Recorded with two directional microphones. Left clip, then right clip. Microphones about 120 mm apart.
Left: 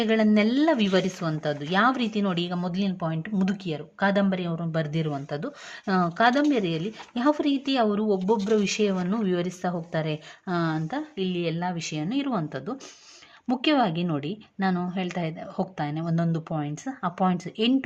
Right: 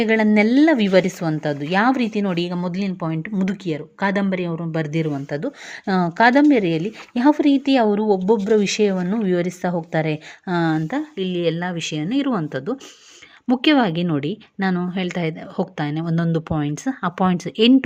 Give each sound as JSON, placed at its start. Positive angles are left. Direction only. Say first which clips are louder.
{"t": 0.0, "sound": "a woman's voice", "louder": "right 6 dB", "side_deg": -35}